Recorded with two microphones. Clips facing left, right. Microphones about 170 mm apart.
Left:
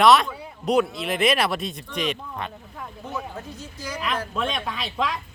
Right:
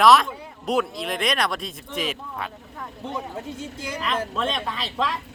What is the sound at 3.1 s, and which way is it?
Speech, 25° right (ahead or behind).